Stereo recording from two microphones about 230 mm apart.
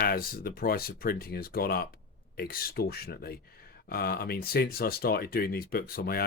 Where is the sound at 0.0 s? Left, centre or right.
Left.